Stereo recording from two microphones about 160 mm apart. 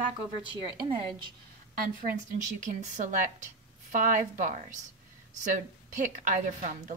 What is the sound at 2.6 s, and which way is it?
A woman's voice, 50° right (ahead or behind).